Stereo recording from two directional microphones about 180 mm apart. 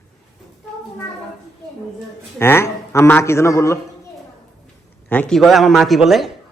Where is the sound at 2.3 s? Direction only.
15° left (ahead or behind).